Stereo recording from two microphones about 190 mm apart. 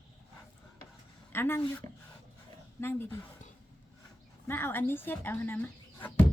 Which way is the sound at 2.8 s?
10° left (ahead or behind).